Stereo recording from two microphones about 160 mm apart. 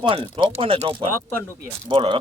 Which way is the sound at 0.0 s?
30° right (ahead or behind).